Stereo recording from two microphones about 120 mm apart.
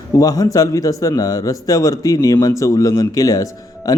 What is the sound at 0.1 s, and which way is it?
A man's voice, 30° left (ahead or behind).